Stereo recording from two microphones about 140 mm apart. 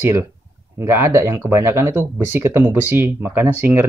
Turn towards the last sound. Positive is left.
turn(degrees=-10)  # may be behind; listen again after turning